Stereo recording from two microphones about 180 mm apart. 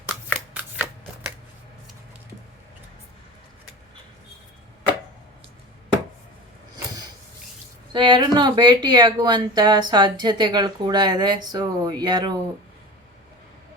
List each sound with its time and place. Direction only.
0.5 s shuffling cards: 10° right (ahead or behind)
7.9 s speech: 25° right (ahead or behind)